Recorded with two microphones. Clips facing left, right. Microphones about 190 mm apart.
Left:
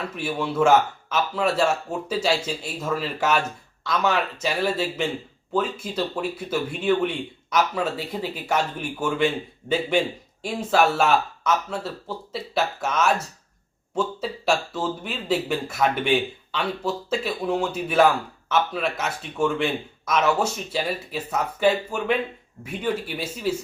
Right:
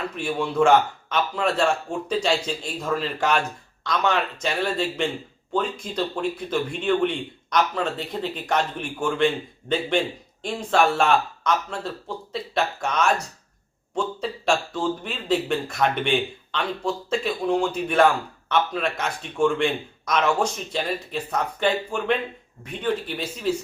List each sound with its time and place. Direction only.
0.2 s speech: 5° left (ahead or behind)